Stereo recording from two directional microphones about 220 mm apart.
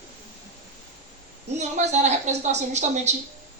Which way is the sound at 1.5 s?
30° right (ahead or behind).